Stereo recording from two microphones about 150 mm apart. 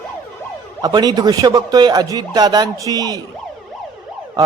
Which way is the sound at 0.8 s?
25° right (ahead or behind).